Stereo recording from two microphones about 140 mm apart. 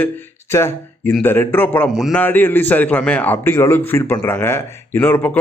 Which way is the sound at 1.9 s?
Centre (ahead or behind).